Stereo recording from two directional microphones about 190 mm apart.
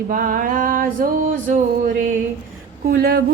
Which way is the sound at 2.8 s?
55° right (ahead or behind).